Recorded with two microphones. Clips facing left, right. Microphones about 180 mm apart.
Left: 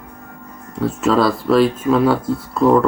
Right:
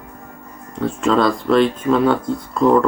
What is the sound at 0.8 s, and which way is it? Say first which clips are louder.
Speech: left 1 dB; 5° left (ahead or behind).